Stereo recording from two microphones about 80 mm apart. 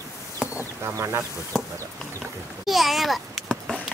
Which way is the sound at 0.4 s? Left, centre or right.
Centre.